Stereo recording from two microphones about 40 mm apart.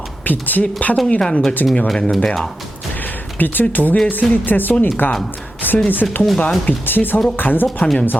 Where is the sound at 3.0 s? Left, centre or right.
Left.